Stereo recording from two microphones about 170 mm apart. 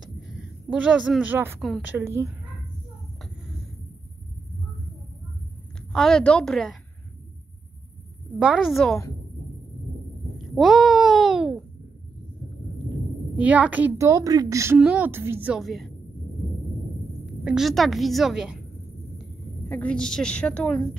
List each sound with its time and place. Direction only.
0.7 s a woman's voice: 5° right (ahead or behind)
5.9 s a woman's voice: 5° left (ahead or behind)
8.4 s a woman's voice: 5° right (ahead or behind)
10.4 s a sound: centre (ahead or behind)
13.4 s a woman's voice: 10° right (ahead or behind)
14.8 s a woman's voice: 5° right (ahead or behind)
17.4 s a woman's voice: 5° right (ahead or behind)
19.7 s a woman's voice: 5° left (ahead or behind)